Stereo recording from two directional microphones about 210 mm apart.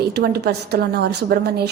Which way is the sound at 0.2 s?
50° right (ahead or behind).